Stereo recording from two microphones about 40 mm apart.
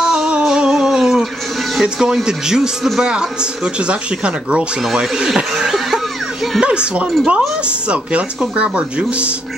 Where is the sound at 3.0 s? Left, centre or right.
Centre.